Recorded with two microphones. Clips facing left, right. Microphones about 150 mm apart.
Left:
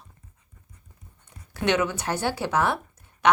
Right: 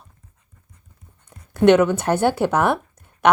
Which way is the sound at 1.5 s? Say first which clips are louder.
Right 10 dB; 55° right (ahead or behind).